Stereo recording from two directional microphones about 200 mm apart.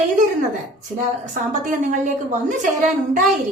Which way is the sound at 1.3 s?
40° right (ahead or behind).